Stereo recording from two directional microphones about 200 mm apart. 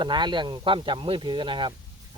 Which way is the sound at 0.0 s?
20° right (ahead or behind).